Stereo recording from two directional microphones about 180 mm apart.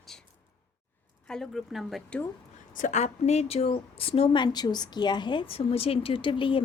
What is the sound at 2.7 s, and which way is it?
Speech, 45° left (ahead or behind).